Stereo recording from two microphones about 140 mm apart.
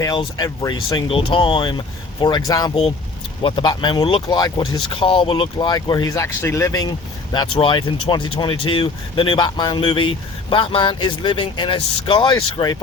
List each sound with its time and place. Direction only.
0.0 s speech: 30° left (ahead or behind)
7.3 s speech: 35° left (ahead or behind)